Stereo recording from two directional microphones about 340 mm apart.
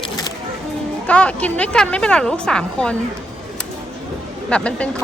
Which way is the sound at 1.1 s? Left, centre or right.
Centre.